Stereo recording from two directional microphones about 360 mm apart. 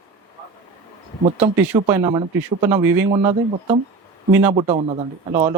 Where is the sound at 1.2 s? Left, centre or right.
Centre.